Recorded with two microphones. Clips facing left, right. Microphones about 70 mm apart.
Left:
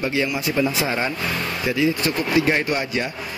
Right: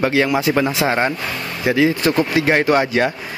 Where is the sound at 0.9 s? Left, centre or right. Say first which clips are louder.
Right 6 dB; right.